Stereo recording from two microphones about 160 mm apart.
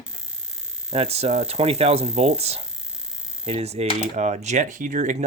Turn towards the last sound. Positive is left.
turn(degrees=-50)  # may be behind; listen again after turning